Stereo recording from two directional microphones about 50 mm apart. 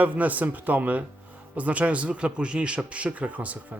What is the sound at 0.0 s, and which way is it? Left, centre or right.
A man's voice, right.